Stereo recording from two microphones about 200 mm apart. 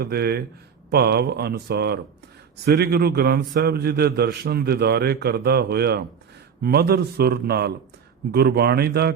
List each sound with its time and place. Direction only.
0.0 s a man's voice: 50° right (ahead or behind)